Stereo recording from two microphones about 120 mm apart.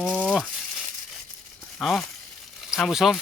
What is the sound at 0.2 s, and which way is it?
Frying, 5° left (ahead or behind).